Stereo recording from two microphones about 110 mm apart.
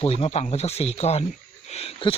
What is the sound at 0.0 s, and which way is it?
Speech, 60° left (ahead or behind).